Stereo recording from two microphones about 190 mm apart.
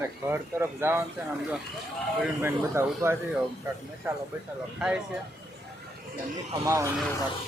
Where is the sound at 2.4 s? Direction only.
15° right (ahead or behind).